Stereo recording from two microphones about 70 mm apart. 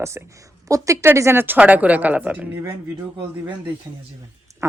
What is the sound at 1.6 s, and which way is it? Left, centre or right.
Speech, right.